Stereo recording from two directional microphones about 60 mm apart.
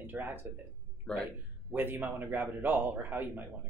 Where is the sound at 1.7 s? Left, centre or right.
Right.